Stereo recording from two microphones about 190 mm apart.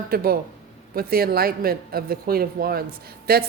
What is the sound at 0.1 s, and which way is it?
A woman's voice, 55° right (ahead or behind).